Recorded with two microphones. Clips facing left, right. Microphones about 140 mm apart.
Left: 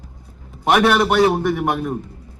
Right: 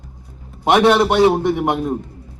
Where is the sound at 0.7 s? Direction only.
20° right (ahead or behind).